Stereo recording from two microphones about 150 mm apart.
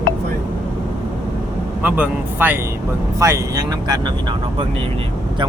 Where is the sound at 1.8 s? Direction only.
10° right (ahead or behind).